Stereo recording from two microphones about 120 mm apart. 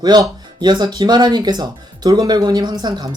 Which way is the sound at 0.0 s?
35° right (ahead or behind).